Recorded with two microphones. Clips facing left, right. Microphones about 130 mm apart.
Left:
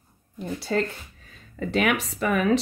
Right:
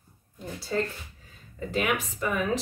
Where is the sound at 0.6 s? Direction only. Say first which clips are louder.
Left 3 dB; 75° left (ahead or behind).